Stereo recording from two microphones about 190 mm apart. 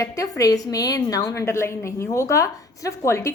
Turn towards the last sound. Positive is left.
turn(degrees=15)  # may be behind; listen again after turning